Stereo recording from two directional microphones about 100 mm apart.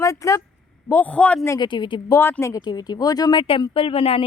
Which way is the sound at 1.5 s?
50° left (ahead or behind).